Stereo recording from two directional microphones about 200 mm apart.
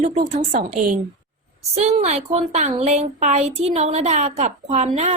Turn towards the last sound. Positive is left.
turn(degrees=-35)  # may be behind; listen again after turning